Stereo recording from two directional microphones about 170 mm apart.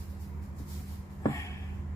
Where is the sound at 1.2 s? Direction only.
20° left (ahead or behind).